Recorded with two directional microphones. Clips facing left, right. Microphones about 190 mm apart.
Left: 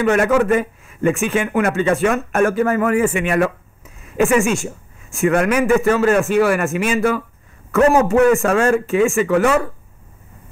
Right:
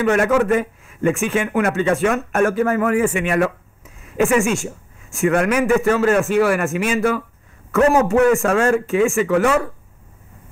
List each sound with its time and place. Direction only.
0.0 s a man's voice: 20° left (ahead or behind)
8.4 s a man's voice: 25° left (ahead or behind)